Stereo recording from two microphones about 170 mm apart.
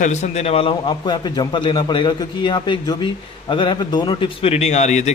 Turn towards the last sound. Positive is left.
turn(degrees=45)  # may be behind; listen again after turning